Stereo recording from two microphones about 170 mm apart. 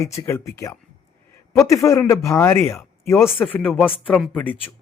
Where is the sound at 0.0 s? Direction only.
20° left (ahead or behind).